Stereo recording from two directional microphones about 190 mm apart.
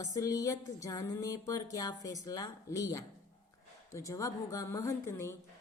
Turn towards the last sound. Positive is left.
turn(degrees=15)  # may be behind; listen again after turning